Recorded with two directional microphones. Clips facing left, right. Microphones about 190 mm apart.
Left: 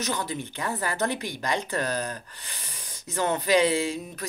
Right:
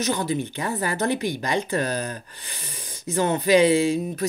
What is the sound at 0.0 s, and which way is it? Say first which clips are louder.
Speech: right 6 dB; 20° right (ahead or behind).